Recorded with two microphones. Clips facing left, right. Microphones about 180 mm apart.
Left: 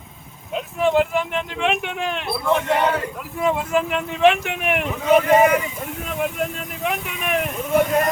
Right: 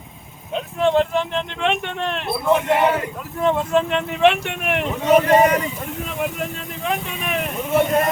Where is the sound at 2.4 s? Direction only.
15° right (ahead or behind).